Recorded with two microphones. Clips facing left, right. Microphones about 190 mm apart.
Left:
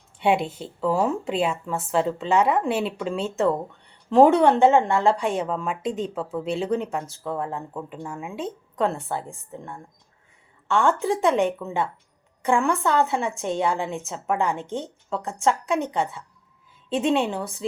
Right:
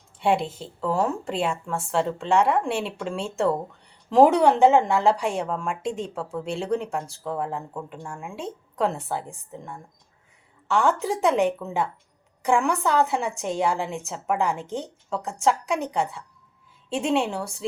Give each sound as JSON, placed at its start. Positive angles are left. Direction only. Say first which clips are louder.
{"t": 0.2, "sound": "a woman's voice", "louder": "left 1 dB", "side_deg": 5}